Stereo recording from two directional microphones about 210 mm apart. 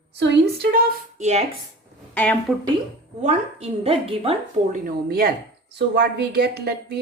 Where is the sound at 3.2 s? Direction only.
30° right (ahead or behind).